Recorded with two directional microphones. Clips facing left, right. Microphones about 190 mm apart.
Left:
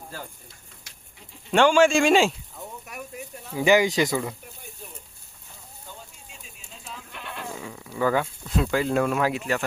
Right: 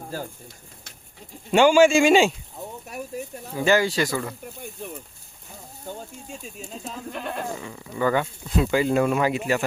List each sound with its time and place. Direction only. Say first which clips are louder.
1.5 s speech: right 2 dB; 5° right (ahead or behind)
2.8 s speech: right 5 dB; 30° right (ahead or behind)
3.6 s speech: left 1 dB; 15° left (ahead or behind)
5.8 s goat: right 10 dB; 45° right (ahead or behind)
7.6 s speech: left 1 dB; centre (ahead or behind)